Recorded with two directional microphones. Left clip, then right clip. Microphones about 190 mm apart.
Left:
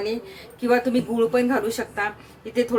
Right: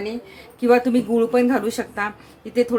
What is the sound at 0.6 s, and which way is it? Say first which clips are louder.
A woman's voice: right 4 dB; 30° right (ahead or behind).